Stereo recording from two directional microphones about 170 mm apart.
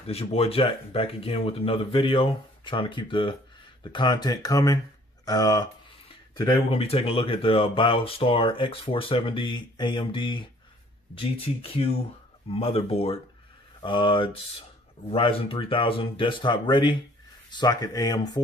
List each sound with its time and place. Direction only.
0.0 s speech: 35° left (ahead or behind)
6.7 s speech: 35° left (ahead or behind)